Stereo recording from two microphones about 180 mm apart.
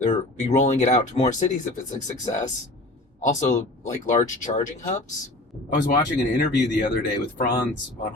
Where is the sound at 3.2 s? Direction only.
40° left (ahead or behind).